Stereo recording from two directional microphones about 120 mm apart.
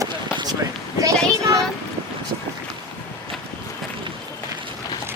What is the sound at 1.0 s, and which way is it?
Child singing, 30° right (ahead or behind).